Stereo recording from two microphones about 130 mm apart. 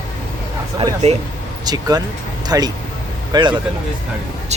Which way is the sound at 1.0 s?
55° right (ahead or behind).